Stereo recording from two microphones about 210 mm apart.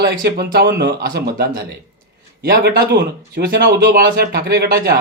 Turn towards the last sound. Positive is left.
turn(degrees=-50)  # may be behind; listen again after turning